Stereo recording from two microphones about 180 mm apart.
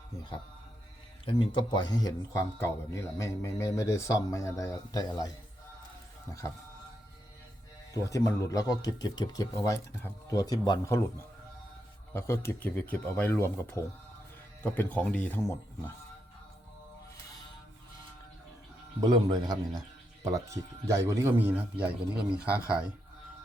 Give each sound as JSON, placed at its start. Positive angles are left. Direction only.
{"t": 1.2, "sound": "speech", "side_deg": 25}
{"t": 7.9, "sound": "speech", "side_deg": 15}
{"t": 12.1, "sound": "speech", "side_deg": 15}
{"t": 18.9, "sound": "a man's voice", "side_deg": -20}